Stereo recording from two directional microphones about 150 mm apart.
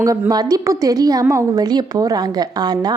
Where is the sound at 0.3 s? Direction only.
25° right (ahead or behind).